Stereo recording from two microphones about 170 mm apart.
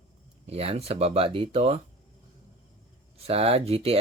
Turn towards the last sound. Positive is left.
turn(degrees=-35)  # may be behind; listen again after turning